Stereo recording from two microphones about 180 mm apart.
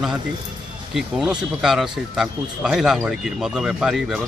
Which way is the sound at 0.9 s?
5° right (ahead or behind).